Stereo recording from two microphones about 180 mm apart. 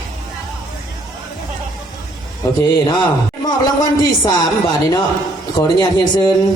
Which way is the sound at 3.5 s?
20° left (ahead or behind).